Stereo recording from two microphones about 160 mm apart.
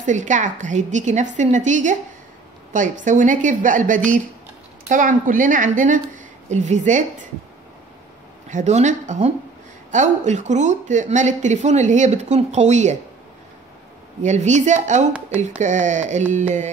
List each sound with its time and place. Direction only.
0.0 s a woman's voice: 50° right (ahead or behind)
8.5 s speech: 50° right (ahead or behind)
14.2 s speech: 45° right (ahead or behind)